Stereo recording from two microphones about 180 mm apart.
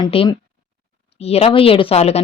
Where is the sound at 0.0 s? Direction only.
30° left (ahead or behind).